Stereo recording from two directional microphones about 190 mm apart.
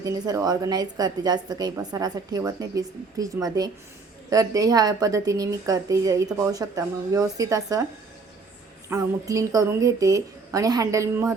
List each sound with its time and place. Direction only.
0.0 s a woman's voice: 20° right (ahead or behind)
8.9 s a woman's voice: 15° right (ahead or behind)